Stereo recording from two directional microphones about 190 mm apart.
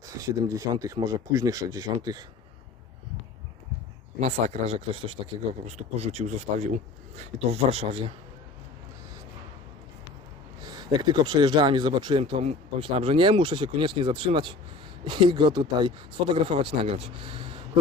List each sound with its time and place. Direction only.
0.2 s speech: 15° right (ahead or behind)
4.2 s speech: 35° right (ahead or behind)
10.6 s speech: 20° right (ahead or behind)